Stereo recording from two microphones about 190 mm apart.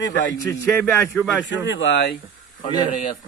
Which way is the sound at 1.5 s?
75° left (ahead or behind).